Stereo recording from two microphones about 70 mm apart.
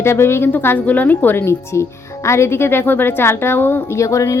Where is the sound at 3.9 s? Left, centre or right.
Left.